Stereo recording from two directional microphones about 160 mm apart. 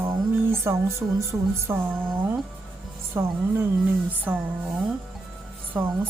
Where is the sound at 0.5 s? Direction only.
15° right (ahead or behind).